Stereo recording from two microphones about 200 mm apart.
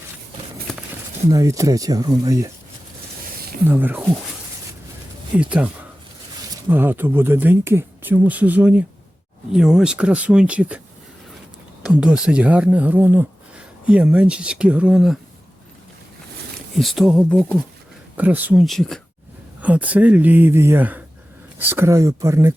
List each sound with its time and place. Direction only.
1.3 s speech: 15° right (ahead or behind)
3.7 s speech: 10° right (ahead or behind)
5.4 s speech: 5° right (ahead or behind)
11.8 s speech: 5° right (ahead or behind)
16.7 s speech: centre (ahead or behind)
18.2 s speech: 10° right (ahead or behind)